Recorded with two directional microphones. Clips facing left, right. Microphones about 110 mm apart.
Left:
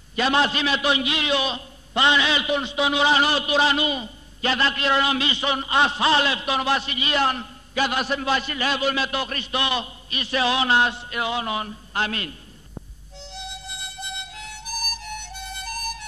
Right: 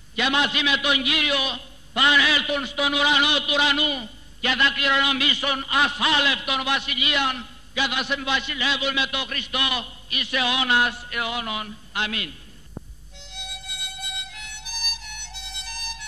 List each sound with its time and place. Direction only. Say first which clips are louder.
0.1 s a man's voice: left 3 dB; 35° left (ahead or behind)
13.2 s music: left 5 dB; 30° left (ahead or behind)